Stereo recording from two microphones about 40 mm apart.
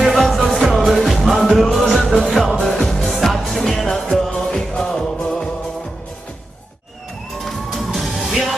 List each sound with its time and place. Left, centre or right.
0.0 s music: centre
7.9 s music: centre